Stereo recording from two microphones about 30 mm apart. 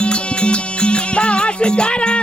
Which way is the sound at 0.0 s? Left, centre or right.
Left.